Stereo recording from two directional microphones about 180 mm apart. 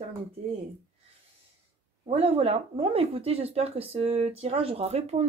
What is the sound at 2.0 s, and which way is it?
Speech, 30° right (ahead or behind).